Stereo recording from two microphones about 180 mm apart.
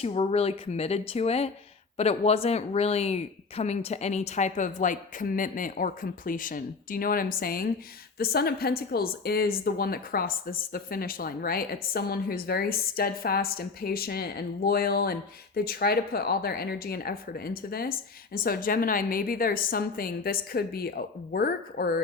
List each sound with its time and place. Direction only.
0.0 s speech: 35° left (ahead or behind); by 22.0 s 60° left (ahead or behind)